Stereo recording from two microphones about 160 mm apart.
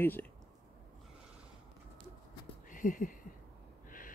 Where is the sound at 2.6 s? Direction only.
55° left (ahead or behind).